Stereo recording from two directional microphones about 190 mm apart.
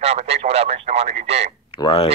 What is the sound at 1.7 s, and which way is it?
Speech, 20° left (ahead or behind).